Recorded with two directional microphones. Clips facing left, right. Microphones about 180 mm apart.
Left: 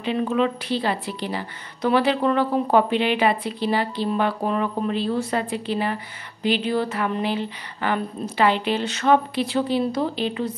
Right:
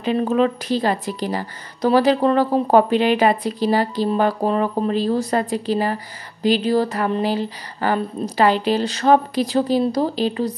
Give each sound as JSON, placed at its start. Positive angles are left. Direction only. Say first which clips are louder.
{"t": 0.0, "sound": "speech", "louder": "right 4 dB", "side_deg": -40}